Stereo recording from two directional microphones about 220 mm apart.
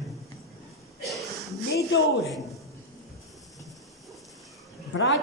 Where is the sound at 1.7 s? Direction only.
45° left (ahead or behind).